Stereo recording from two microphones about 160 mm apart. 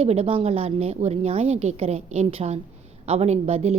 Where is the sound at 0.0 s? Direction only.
40° right (ahead or behind).